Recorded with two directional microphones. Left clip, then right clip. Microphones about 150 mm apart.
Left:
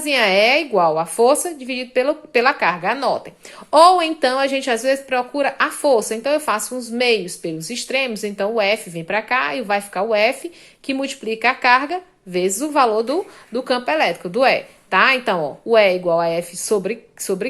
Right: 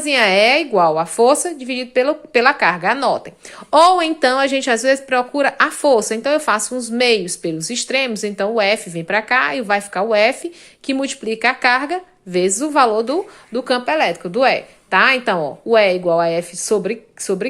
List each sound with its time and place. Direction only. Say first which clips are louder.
0.0 s a woman's voice: right 2 dB; 20° right (ahead or behind)